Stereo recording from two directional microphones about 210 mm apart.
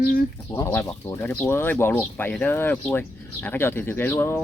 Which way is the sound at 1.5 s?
10° left (ahead or behind).